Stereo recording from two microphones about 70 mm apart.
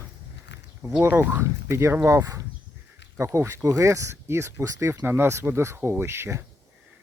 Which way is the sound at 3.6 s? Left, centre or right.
Right.